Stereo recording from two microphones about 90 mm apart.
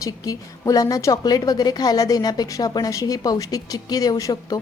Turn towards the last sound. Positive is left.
turn(degrees=45)  # may be behind; listen again after turning